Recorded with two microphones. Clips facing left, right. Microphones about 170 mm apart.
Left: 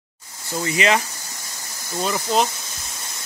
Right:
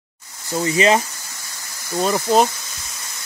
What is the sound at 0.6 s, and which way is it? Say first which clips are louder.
Speech: right 4 dB; 30° right (ahead or behind).